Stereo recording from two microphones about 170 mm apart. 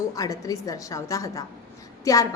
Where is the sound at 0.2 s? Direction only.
20° left (ahead or behind).